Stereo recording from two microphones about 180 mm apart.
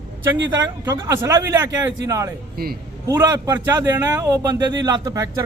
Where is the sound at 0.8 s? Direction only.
15° right (ahead or behind).